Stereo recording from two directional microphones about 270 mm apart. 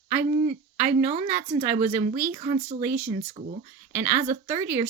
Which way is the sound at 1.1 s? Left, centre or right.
Right.